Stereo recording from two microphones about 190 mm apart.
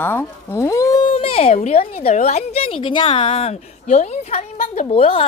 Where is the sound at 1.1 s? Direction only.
30° left (ahead or behind).